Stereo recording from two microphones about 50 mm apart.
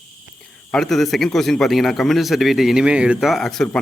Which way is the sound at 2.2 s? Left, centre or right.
Centre.